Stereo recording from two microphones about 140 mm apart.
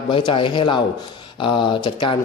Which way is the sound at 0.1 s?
35° left (ahead or behind).